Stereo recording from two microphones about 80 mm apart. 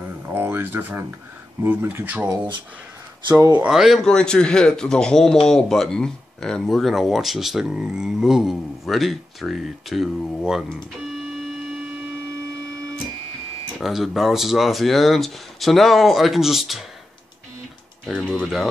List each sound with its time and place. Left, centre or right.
0.3 s speech: right
3.3 s speech: right
3.6 s a man's voice: centre
4.1 s a man's voice: centre
13.7 s a man's voice: centre
18.2 s speech: centre